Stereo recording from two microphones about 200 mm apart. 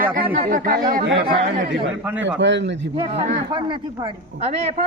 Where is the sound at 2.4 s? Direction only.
60° right (ahead or behind).